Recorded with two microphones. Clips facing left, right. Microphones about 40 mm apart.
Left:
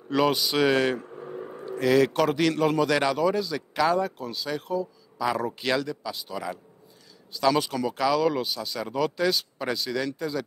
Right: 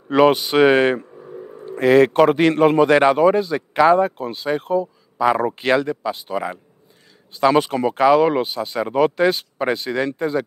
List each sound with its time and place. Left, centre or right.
0.1 s a man's voice: right